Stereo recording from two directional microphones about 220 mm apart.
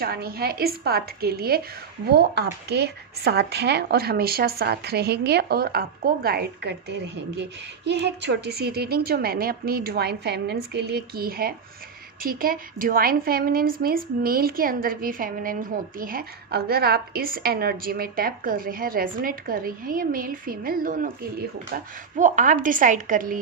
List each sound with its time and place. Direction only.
0.0 s a woman's voice: 45° right (ahead or behind)